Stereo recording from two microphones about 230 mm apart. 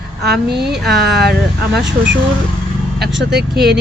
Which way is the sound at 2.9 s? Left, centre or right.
Right.